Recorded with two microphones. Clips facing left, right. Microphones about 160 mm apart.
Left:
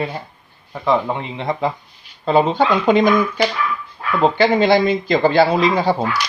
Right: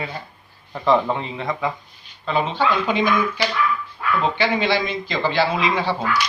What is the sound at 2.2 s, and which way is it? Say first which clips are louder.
Speech: left 6 dB; 40° left (ahead or behind).